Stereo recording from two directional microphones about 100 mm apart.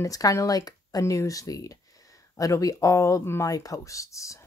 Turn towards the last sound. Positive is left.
turn(degrees=30)  # may be behind; listen again after turning